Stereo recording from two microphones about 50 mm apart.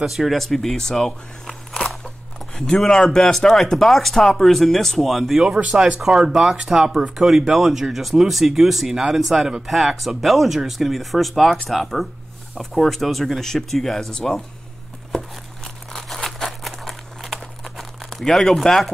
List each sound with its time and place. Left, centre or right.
0.0 s speech: centre
15.1 s crumpling: centre